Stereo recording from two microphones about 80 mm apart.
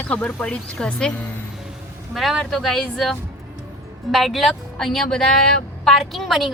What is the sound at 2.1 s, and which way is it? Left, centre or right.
A woman's voice, centre.